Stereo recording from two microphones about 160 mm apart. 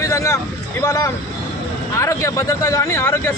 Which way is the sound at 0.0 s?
20° left (ahead or behind).